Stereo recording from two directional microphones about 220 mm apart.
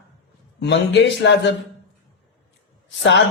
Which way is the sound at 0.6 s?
50° left (ahead or behind).